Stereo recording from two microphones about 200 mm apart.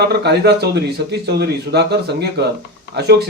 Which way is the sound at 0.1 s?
55° right (ahead or behind).